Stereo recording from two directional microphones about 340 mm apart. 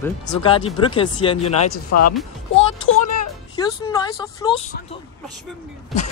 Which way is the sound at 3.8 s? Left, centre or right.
Centre.